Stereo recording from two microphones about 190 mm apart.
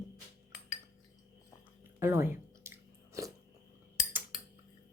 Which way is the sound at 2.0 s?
10° right (ahead or behind).